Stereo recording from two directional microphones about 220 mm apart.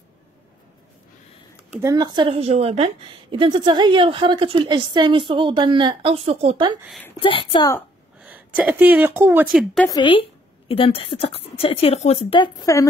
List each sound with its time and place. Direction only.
1.8 s a woman's voice: 15° right (ahead or behind)
7.2 s speech: 25° left (ahead or behind)
8.2 s speech: 5° right (ahead or behind)
9.8 s speech: 20° left (ahead or behind)